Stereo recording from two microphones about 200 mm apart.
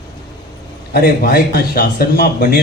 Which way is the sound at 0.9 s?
50° left (ahead or behind).